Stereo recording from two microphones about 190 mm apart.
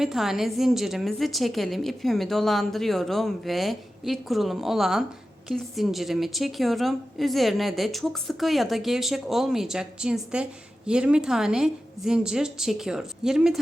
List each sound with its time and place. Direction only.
0.0 s a woman's voice: centre (ahead or behind)